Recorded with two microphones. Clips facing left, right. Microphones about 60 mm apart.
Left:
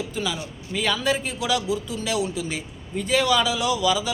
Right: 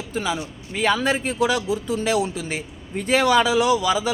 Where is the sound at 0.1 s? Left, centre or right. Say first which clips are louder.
Right 3 dB; right.